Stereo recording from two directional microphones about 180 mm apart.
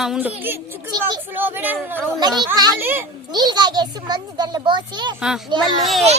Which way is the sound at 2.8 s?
10° right (ahead or behind).